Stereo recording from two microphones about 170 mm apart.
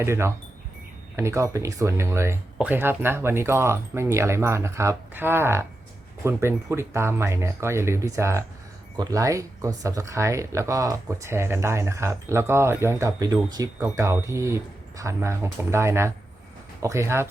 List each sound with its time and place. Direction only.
0.0 s speech: 15° right (ahead or behind)